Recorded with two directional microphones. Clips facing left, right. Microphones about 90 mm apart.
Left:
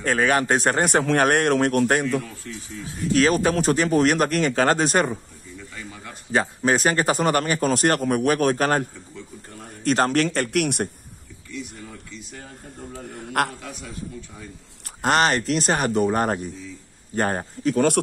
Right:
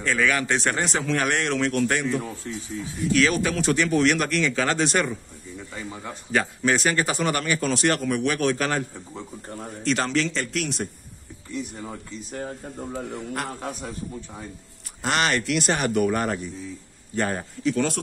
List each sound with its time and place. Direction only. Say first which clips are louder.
0.0 s a man's voice: left 3 dB; 45° left (ahead or behind)
6.3 s a man's voice: left 2 dB; 35° left (ahead or behind)
9.1 s a sound: right 4 dB; 40° right (ahead or behind)
9.8 s a man's voice: left 4 dB; 45° left (ahead or behind)
11.5 s speech: right 3 dB; 40° right (ahead or behind)
13.2 s a man's voice: left 7 dB; 70° left (ahead or behind)
13.6 s speech: right 4 dB; 40° right (ahead or behind)
15.0 s a man's voice: left 4 dB; 40° left (ahead or behind)